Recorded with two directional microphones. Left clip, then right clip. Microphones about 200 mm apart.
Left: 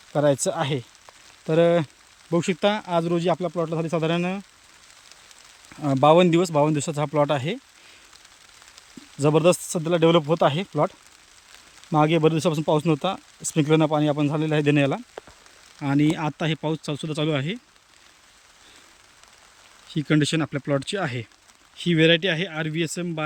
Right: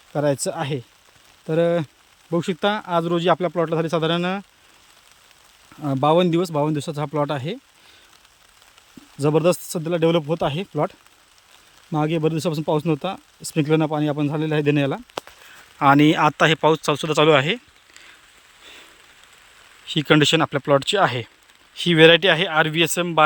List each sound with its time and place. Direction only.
0.1 s speech: 5° left (ahead or behind)
5.8 s speech: 5° left (ahead or behind)
9.1 s speech: 5° left (ahead or behind)
19.9 s speech: 5° left (ahead or behind)